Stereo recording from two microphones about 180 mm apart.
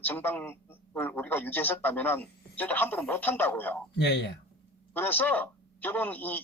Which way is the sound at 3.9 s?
70° left (ahead or behind).